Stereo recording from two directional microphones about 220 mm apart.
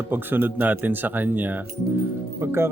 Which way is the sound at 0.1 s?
10° right (ahead or behind).